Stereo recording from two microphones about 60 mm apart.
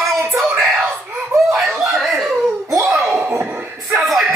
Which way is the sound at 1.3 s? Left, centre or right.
Centre.